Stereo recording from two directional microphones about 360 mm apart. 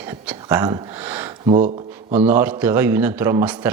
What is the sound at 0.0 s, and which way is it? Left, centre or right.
Speech, centre.